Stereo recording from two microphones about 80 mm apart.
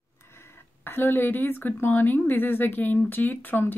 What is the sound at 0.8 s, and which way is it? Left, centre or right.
A woman's voice, left.